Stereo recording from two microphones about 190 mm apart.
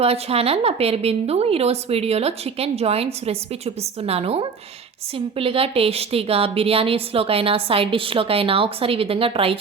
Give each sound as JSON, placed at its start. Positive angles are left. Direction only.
{"t": 0.0, "sound": "a woman's voice", "side_deg": -30}